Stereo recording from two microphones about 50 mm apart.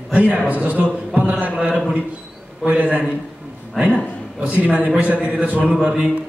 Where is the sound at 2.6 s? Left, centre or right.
Right.